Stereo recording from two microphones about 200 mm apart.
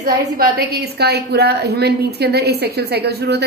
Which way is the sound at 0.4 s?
55° right (ahead or behind).